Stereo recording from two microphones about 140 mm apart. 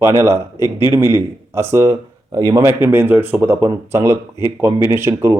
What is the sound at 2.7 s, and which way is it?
Speech, 15° right (ahead or behind).